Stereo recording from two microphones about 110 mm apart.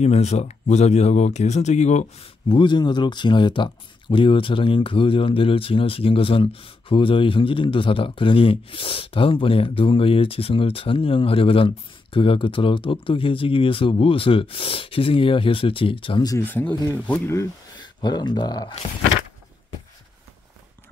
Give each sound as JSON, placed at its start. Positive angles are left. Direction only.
{"t": 0.0, "sound": "speech", "side_deg": 75}
{"t": 2.5, "sound": "speech", "side_deg": 45}
{"t": 16.4, "sound": "speech", "side_deg": 15}
{"t": 17.7, "sound": "speech", "side_deg": 40}